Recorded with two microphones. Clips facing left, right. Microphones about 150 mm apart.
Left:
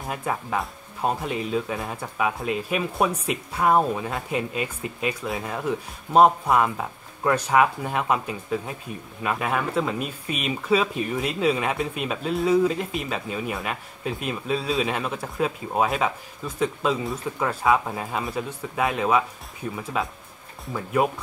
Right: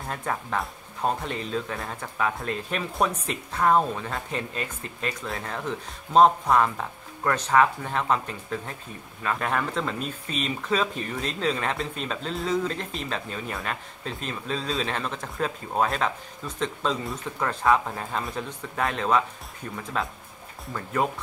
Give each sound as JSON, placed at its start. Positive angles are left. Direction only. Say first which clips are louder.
{"t": 0.1, "sound": "speech", "louder": "left 2 dB", "side_deg": 10}